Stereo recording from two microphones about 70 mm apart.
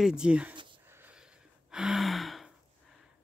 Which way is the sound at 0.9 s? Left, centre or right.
Right.